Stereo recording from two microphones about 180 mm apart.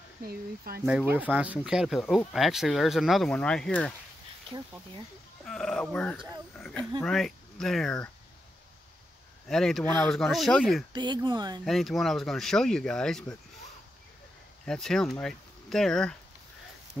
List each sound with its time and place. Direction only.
0.3 s speech: 60° right (ahead or behind)
0.8 s speech: 10° right (ahead or behind)
4.5 s speech: 25° right (ahead or behind)
5.4 s speech: centre (ahead or behind)
9.5 s speech: centre (ahead or behind)
10.9 s speech: 25° right (ahead or behind)
11.6 s speech: centre (ahead or behind)
14.7 s speech: 5° left (ahead or behind)